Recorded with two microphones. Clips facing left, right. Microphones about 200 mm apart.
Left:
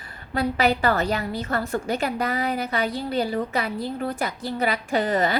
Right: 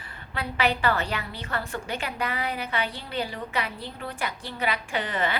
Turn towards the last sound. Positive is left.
turn(degrees=40)  # may be behind; listen again after turning